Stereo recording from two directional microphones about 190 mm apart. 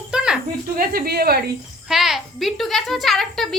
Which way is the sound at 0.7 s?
50° right (ahead or behind).